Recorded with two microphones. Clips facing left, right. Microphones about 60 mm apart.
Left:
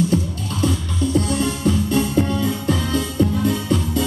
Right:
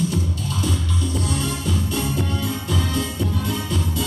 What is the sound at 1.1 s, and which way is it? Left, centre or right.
Music, left.